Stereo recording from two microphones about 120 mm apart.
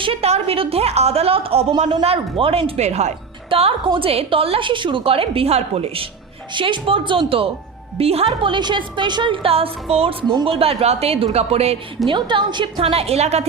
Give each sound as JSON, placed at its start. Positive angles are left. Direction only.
{"t": 0.0, "sound": "a woman's voice", "side_deg": -55}
{"t": 3.5, "sound": "a woman's voice", "side_deg": -50}
{"t": 6.5, "sound": "a woman's voice", "side_deg": -45}
{"t": 8.4, "sound": "a woman's voice", "side_deg": -45}
{"t": 12.0, "sound": "a woman's voice", "side_deg": -40}